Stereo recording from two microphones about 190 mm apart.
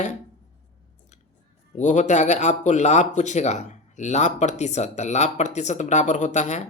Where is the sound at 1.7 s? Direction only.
40° left (ahead or behind).